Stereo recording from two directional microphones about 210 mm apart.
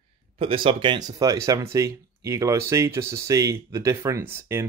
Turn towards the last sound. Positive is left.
turn(degrees=-10)  # may be behind; listen again after turning